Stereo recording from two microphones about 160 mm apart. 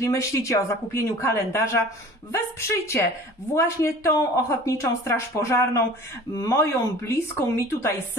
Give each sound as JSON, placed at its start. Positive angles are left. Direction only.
{"t": 0.1, "sound": "speech", "side_deg": 20}